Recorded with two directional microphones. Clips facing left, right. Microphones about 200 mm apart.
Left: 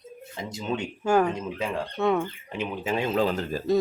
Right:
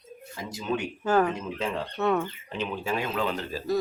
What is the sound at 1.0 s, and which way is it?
Speech, 15° left (ahead or behind).